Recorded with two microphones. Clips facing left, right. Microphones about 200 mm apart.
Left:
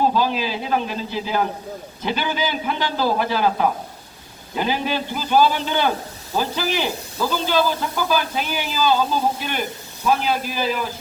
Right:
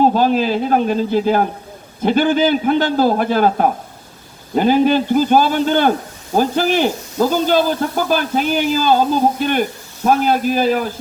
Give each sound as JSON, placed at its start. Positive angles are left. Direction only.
{"t": 0.0, "sound": "speech", "side_deg": -50}